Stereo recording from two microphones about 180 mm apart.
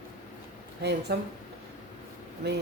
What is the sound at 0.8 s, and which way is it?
Speech, 70° right (ahead or behind).